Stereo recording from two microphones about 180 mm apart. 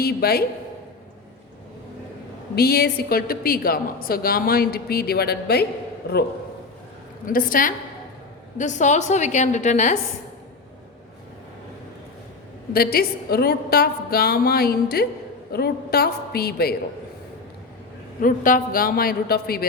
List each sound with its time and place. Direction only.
0.0 s a woman's voice: 60° left (ahead or behind)
2.6 s a woman's voice: 60° left (ahead or behind)
7.3 s a man's voice: 50° left (ahead or behind)
12.7 s a woman's voice: 60° left (ahead or behind)
18.2 s a man's voice: 50° left (ahead or behind)